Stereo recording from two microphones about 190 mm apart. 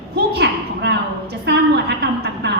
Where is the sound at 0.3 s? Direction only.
60° right (ahead or behind).